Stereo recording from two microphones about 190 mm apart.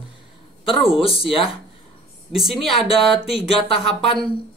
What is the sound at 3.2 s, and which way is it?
Speech, 30° left (ahead or behind).